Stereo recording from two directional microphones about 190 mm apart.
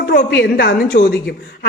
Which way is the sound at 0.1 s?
55° left (ahead or behind).